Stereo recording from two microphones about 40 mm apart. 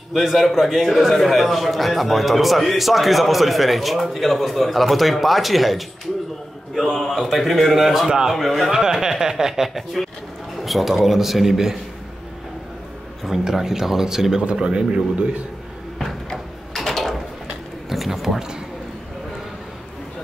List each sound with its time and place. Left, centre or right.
0.2 s a man's voice: centre
8.7 s a man's voice: centre
13.4 s a man's voice: centre
14.4 s a man's voice: right
16.7 s a sound: centre